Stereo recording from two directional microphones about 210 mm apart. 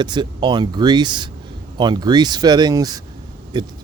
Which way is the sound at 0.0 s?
20° right (ahead or behind).